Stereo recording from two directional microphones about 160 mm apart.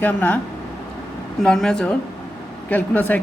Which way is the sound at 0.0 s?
10° left (ahead or behind).